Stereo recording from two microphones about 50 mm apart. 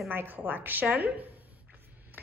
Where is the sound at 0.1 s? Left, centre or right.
Right.